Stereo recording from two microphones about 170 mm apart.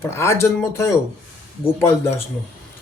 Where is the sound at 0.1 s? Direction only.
15° left (ahead or behind).